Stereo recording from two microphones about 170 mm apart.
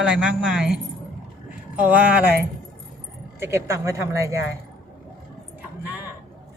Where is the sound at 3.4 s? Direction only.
15° right (ahead or behind).